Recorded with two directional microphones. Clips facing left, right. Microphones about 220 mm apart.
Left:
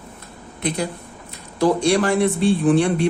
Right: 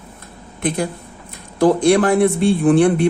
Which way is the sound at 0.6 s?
50° right (ahead or behind).